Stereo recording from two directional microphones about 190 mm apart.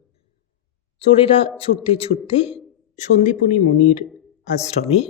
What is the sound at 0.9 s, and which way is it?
Speech, 30° left (ahead or behind).